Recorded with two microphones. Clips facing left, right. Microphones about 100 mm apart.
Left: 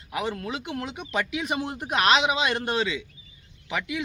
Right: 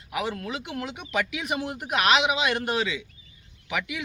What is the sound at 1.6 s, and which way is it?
Speech, 30° left (ahead or behind).